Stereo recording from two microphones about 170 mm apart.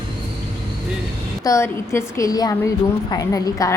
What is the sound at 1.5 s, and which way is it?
A woman's voice, 15° left (ahead or behind).